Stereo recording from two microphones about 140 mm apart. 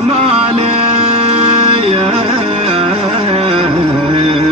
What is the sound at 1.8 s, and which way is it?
Carnatic music, 45° right (ahead or behind).